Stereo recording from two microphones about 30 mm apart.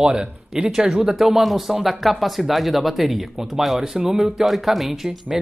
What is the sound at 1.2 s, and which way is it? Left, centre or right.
Speech, centre.